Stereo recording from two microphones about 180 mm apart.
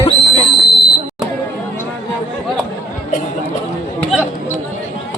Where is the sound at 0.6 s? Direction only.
Centre (ahead or behind).